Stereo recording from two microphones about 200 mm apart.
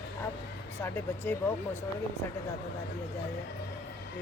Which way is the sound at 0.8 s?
10° left (ahead or behind).